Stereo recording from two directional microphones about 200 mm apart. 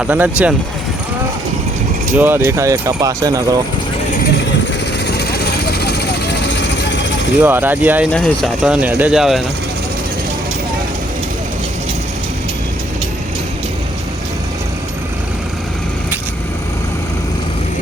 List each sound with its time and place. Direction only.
0.0 s speech: 5° right (ahead or behind)
2.1 s speech: 10° right (ahead or behind)
5.0 s vehicle: 55° left (ahead or behind)
7.4 s speech: 10° right (ahead or behind)
8.1 s speech: centre (ahead or behind)